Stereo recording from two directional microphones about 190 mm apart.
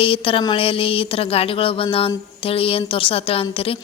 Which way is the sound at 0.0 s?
30° left (ahead or behind).